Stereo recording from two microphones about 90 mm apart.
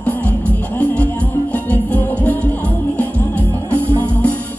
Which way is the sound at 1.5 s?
20° left (ahead or behind).